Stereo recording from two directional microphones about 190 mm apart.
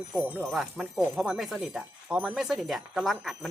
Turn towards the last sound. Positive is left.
turn(degrees=0)  # may be behind; listen again after turning